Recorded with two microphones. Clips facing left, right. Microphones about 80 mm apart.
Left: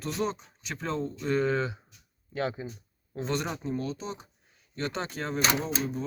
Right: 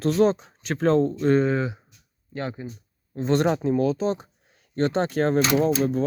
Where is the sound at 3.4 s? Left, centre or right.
Right.